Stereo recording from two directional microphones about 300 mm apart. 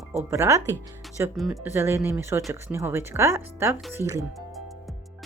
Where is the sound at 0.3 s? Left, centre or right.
Centre.